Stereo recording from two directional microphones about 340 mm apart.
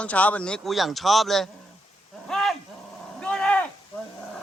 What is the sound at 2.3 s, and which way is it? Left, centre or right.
Wild animals, centre.